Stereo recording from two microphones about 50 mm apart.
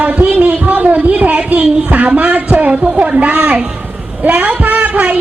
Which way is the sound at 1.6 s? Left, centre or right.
Centre.